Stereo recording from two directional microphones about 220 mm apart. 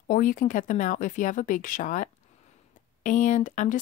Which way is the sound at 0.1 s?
35° left (ahead or behind).